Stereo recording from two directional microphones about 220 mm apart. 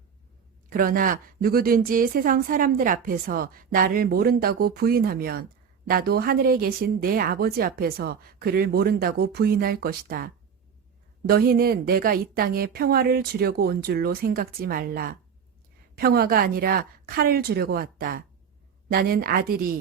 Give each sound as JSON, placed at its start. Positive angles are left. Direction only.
{"t": 0.7, "sound": "a woman's voice", "side_deg": -40}